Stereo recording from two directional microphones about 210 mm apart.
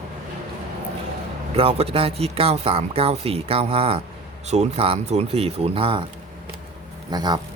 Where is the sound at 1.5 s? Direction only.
30° right (ahead or behind).